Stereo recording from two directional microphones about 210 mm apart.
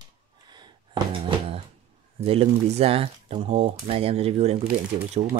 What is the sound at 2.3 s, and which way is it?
Speech, 30° right (ahead or behind).